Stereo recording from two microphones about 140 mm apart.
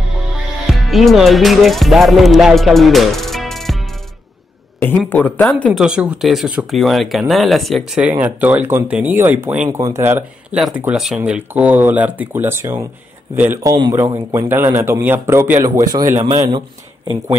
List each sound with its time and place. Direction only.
0.7 s speech: centre (ahead or behind)
4.8 s speech: 10° left (ahead or behind)
5.7 s speech: 5° right (ahead or behind)
8.0 s speech: 10° right (ahead or behind)
10.8 s a man's voice: 5° right (ahead or behind); by 16.2 s 25° right (ahead or behind)